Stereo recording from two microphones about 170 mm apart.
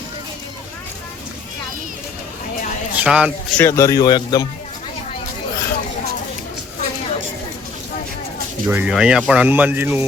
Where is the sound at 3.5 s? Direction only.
15° left (ahead or behind).